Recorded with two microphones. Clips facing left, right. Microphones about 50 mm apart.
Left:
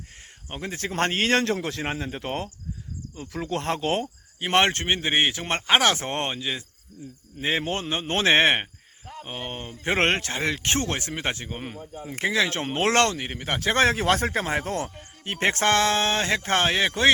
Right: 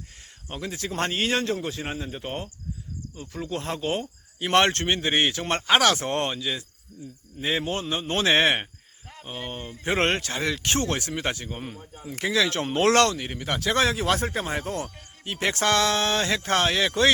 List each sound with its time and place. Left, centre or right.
0.4 s speech: left
4.4 s speech: left